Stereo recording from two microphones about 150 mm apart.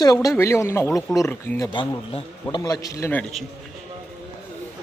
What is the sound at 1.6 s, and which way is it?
Speech, 35° left (ahead or behind).